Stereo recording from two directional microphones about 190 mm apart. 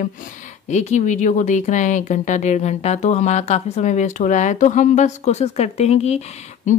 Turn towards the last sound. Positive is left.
turn(degrees=40)  # may be behind; listen again after turning